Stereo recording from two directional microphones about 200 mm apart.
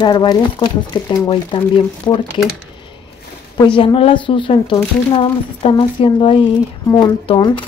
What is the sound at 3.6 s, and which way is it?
Speech, 25° left (ahead or behind).